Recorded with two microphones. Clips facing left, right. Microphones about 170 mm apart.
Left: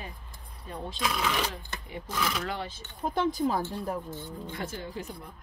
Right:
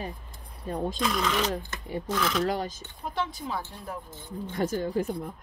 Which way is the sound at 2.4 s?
40° right (ahead or behind).